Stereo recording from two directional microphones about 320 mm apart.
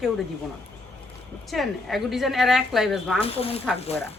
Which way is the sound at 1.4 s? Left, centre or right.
Centre.